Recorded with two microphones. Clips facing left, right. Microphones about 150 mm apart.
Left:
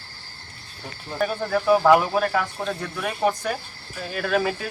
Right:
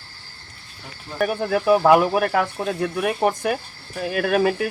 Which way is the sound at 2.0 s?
60° right (ahead or behind).